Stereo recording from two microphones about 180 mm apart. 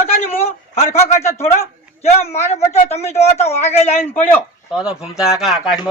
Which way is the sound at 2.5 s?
35° left (ahead or behind).